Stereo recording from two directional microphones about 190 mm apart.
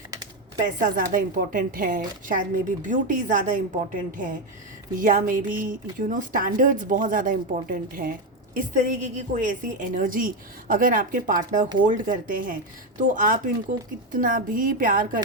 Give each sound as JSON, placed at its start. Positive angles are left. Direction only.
{"t": 0.6, "sound": "speech", "side_deg": -45}